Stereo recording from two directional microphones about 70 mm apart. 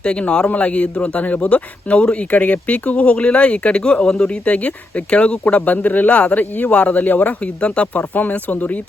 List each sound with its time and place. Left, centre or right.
0.0 s a man's voice: centre